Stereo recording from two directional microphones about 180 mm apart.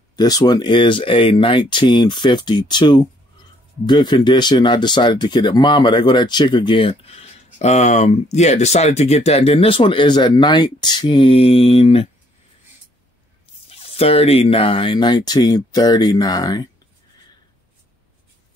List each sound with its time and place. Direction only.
0.1 s speech: 20° left (ahead or behind)
13.7 s speech: 30° left (ahead or behind)